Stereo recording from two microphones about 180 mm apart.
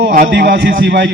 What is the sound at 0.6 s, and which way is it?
Speech, 80° right.